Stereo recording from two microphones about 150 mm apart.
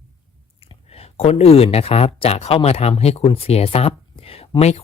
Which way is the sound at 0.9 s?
40° left (ahead or behind).